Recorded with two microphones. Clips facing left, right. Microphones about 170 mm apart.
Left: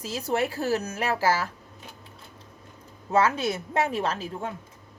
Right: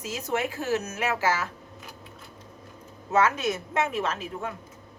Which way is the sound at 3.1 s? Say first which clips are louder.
Left 1 dB; 30° left (ahead or behind).